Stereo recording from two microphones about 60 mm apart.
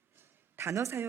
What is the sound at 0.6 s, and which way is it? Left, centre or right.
Speech, right.